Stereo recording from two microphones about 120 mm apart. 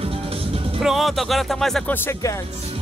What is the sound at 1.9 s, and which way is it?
Speech, 20° left (ahead or behind).